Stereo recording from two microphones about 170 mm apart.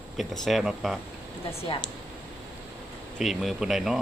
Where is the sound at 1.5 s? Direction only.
35° left (ahead or behind).